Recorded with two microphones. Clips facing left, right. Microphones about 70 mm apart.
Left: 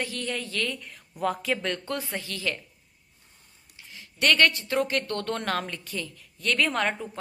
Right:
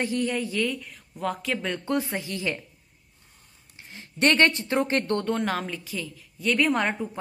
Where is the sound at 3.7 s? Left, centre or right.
Right.